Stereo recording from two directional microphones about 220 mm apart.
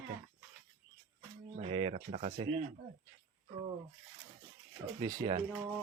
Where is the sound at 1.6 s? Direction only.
25° right (ahead or behind).